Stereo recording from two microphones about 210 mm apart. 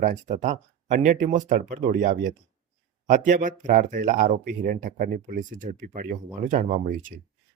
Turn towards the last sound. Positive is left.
turn(degrees=-40)  # may be behind; listen again after turning